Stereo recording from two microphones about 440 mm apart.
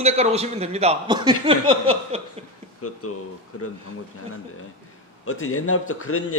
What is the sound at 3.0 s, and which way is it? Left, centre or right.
Speech, left.